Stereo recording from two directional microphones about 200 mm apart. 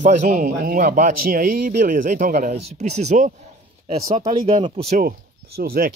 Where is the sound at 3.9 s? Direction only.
20° right (ahead or behind).